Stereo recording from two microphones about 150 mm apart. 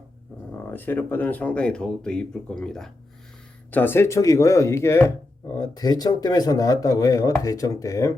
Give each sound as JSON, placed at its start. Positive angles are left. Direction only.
{"t": 0.5, "sound": "speech", "side_deg": 10}